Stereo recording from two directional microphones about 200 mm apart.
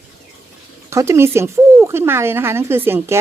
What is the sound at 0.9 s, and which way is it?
Speech, 15° right (ahead or behind).